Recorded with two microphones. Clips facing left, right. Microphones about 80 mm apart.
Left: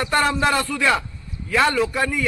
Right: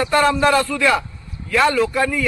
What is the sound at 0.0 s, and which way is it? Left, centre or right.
A man's voice, left.